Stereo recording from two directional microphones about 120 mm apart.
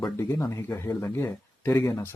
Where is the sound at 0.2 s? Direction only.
25° left (ahead or behind).